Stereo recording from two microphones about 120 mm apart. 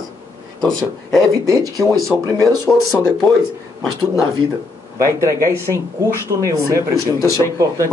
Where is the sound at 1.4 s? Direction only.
30° right (ahead or behind).